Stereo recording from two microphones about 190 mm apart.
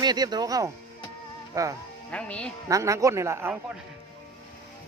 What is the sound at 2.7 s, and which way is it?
Speech, 15° right (ahead or behind).